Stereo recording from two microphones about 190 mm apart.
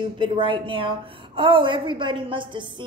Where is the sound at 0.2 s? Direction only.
25° right (ahead or behind).